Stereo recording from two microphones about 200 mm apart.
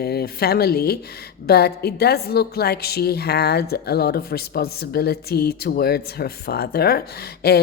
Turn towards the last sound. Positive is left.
turn(degrees=50)  # may be behind; listen again after turning